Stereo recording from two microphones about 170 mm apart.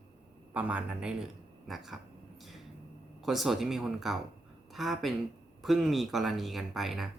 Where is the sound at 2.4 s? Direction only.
Centre (ahead or behind).